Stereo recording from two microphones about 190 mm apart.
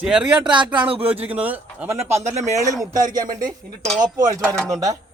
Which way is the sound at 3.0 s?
20° right (ahead or behind).